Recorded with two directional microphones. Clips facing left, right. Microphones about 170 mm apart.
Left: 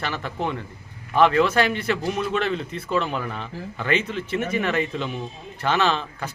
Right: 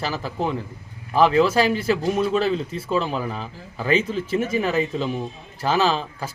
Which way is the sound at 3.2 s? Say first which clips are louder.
Right 2 dB; 5° right (ahead or behind).